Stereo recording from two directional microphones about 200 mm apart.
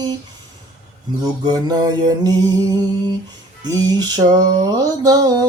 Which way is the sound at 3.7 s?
20° right (ahead or behind).